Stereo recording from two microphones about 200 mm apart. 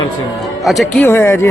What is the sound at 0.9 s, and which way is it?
Speech, 10° left (ahead or behind).